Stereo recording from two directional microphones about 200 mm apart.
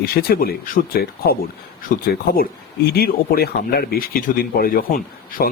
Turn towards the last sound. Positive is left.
turn(degrees=45)  # may be behind; listen again after turning